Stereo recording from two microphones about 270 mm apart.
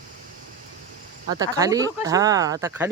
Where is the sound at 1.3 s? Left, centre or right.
Centre.